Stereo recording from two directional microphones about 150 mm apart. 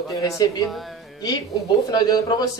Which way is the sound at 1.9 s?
25° left (ahead or behind).